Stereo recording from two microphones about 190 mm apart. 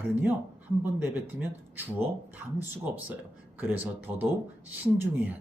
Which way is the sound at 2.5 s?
10° right (ahead or behind).